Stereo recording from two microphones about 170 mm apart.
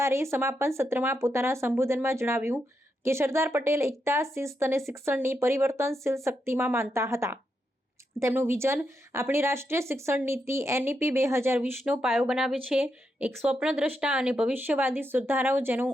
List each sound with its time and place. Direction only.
0.0 s speech: 15° right (ahead or behind)
11.8 s speech: centre (ahead or behind)